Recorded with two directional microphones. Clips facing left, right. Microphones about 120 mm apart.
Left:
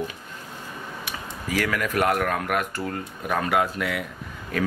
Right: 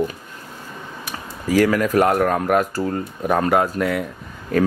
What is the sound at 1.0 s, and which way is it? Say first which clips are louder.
Speech: right 9 dB; 35° right (ahead or behind).